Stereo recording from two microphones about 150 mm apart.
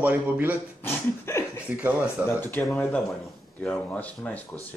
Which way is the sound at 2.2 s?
15° left (ahead or behind).